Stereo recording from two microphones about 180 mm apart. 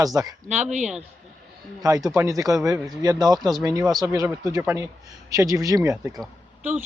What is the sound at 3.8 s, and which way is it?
Speech, centre (ahead or behind).